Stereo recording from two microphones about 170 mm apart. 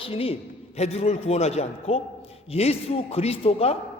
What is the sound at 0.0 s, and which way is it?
A woman's voice, 35° left (ahead or behind).